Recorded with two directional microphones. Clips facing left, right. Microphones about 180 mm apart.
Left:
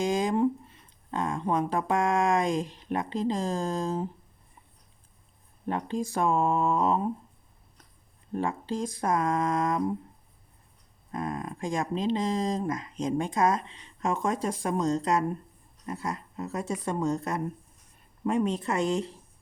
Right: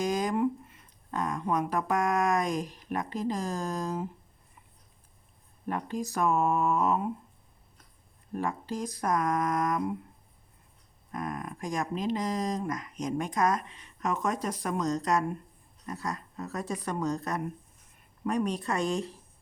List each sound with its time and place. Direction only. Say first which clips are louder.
0.0 s speech: left 2 dB; 25° left (ahead or behind)
5.6 s speech: left 3 dB; 25° left (ahead or behind)
8.4 s speech: left 3 dB; 25° left (ahead or behind)
11.1 s speech: left 2 dB; 25° left (ahead or behind)